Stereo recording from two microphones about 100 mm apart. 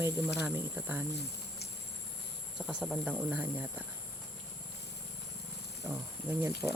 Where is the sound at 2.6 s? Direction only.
5° right (ahead or behind).